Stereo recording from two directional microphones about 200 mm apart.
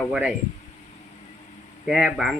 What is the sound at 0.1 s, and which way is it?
Speech, 5° right (ahead or behind).